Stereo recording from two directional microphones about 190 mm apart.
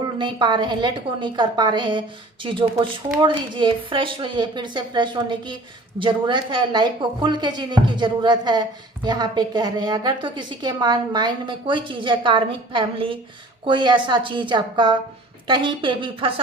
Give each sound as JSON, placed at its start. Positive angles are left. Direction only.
{"t": 0.0, "sound": "a woman's voice", "side_deg": -25}